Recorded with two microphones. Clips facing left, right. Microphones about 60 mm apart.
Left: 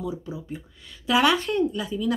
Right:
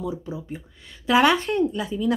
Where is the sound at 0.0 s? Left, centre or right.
Right.